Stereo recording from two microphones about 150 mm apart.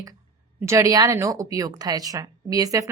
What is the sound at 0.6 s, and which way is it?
A woman's voice, 20° right (ahead or behind).